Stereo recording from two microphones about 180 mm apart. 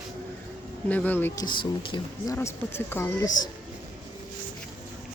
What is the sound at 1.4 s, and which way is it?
Speech, 25° left (ahead or behind).